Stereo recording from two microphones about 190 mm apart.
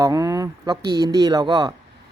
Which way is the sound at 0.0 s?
20° right (ahead or behind).